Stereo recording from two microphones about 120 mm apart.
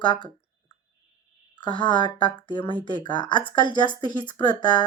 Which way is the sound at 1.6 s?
40° left (ahead or behind).